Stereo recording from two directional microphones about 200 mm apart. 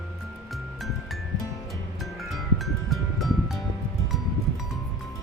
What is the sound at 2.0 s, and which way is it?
Music, centre (ahead or behind).